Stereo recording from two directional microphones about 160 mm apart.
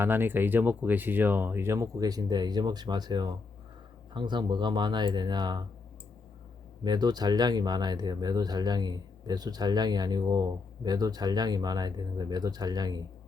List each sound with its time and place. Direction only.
0.0 s speech: 15° right (ahead or behind)
6.8 s speech: 25° right (ahead or behind)